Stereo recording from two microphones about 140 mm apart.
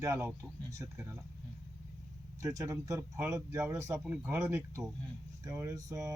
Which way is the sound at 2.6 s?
25° right (ahead or behind).